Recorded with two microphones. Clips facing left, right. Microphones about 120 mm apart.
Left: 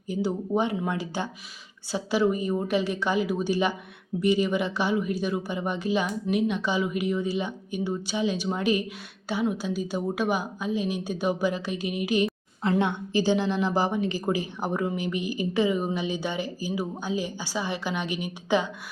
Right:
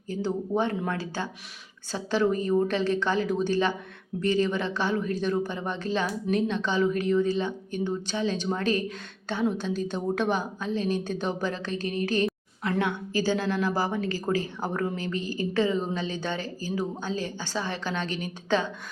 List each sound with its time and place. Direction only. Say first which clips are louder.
0.1 s a woman's voice: left 1 dB; 15° left (ahead or behind)